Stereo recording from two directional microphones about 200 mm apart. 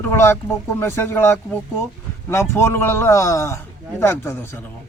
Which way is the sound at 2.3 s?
15° left (ahead or behind).